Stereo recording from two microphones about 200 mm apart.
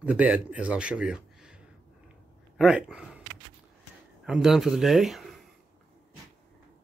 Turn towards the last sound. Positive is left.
turn(degrees=0)  # may be behind; listen again after turning